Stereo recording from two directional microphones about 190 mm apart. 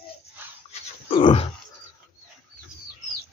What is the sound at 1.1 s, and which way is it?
Grunt, 25° left (ahead or behind).